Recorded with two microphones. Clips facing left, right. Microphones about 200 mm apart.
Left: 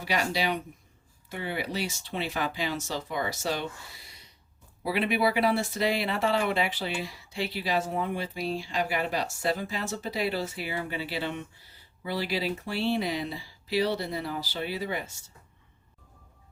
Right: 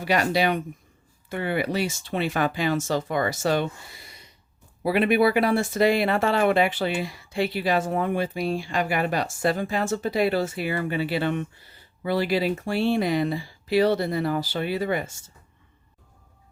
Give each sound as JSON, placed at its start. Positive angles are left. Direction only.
{"t": 0.0, "sound": "speech", "side_deg": -55}